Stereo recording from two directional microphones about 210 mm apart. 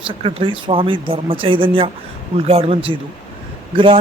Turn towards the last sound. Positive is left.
turn(degrees=-25)  # may be behind; listen again after turning